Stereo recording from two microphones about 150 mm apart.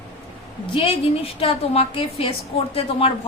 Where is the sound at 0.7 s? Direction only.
40° left (ahead or behind).